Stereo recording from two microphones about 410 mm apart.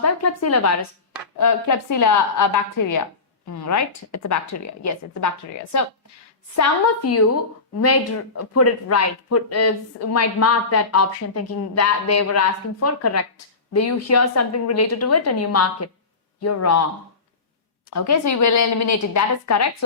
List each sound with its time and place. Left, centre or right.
0.0 s a woman's voice: left
6.6 s speech: left
8.4 s speech: left
17.9 s a woman's voice: left